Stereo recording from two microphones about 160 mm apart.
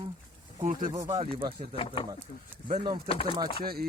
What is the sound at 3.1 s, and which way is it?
Speech, 35° left (ahead or behind).